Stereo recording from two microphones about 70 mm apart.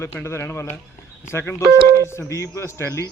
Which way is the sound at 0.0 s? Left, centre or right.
Left.